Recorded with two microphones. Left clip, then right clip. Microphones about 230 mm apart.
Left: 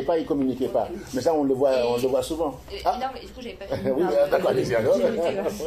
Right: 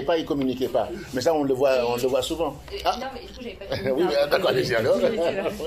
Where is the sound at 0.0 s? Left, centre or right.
Right.